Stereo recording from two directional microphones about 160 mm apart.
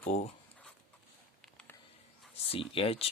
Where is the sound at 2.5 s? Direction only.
35° left (ahead or behind).